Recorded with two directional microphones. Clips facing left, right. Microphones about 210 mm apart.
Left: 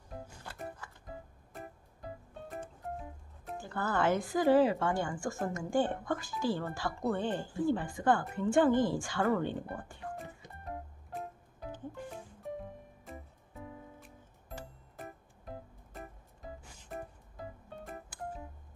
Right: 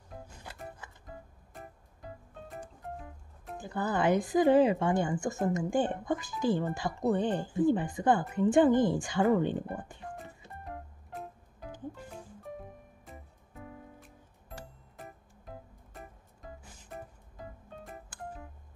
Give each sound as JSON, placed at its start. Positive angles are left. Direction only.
{"t": 0.4, "sound": "music", "side_deg": -15}
{"t": 3.5, "sound": "speech", "side_deg": -15}
{"t": 10.4, "sound": "music", "side_deg": 15}